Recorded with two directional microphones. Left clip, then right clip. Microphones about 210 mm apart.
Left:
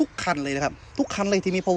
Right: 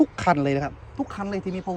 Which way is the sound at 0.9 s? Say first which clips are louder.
Left 7 dB; 20° left (ahead or behind).